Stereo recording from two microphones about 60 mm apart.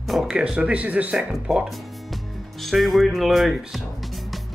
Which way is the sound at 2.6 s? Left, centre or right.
Centre.